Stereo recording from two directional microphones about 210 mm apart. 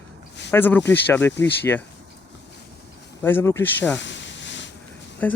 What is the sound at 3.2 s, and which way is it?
Speech, 10° left (ahead or behind).